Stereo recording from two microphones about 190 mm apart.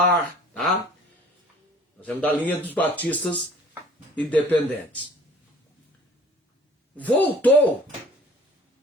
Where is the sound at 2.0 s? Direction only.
10° left (ahead or behind).